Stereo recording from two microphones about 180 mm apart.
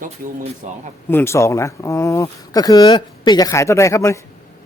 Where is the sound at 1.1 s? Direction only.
15° left (ahead or behind).